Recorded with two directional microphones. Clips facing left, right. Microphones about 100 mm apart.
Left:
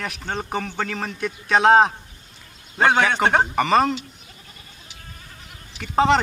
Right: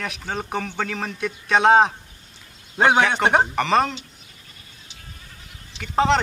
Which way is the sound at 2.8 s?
10° right (ahead or behind).